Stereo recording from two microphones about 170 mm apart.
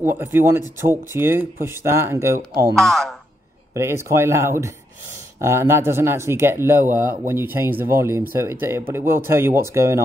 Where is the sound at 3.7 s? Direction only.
15° right (ahead or behind).